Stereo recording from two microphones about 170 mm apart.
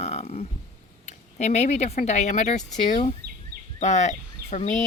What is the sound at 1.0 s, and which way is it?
Speech, 40° left (ahead or behind).